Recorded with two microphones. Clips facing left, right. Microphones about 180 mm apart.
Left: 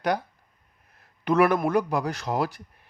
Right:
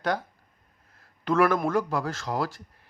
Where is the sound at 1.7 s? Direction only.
15° left (ahead or behind).